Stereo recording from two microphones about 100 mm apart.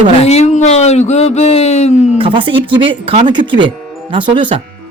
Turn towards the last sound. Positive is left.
turn(degrees=-55)  # may be behind; listen again after turning